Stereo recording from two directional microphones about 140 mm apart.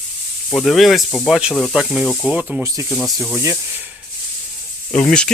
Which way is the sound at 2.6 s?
20° right (ahead or behind).